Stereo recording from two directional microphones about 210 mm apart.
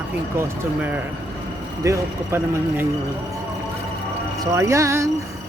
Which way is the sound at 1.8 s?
15° right (ahead or behind).